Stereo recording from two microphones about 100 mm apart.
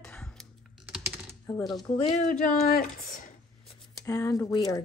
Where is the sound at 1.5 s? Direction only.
15° left (ahead or behind).